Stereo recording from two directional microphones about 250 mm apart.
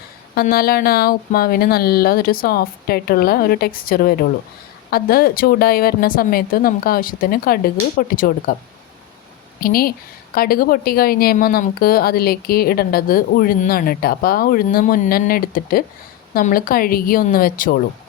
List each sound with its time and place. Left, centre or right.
0.3 s a woman's voice: left
9.6 s a woman's voice: left